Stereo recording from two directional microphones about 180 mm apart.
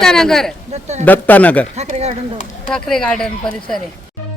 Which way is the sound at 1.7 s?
35° right (ahead or behind).